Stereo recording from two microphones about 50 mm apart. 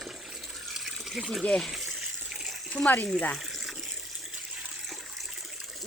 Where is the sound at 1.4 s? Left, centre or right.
Centre.